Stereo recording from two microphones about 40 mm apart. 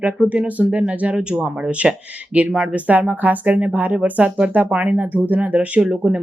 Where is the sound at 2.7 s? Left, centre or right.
Right.